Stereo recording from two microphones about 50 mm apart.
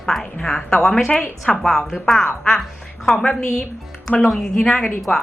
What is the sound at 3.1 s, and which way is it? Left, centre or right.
A woman's voice, centre.